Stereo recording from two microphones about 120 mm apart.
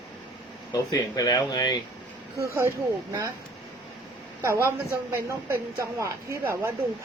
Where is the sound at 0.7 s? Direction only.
30° left (ahead or behind).